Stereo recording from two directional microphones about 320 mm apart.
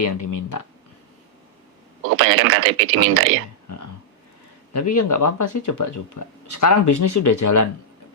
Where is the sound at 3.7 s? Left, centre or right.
Left.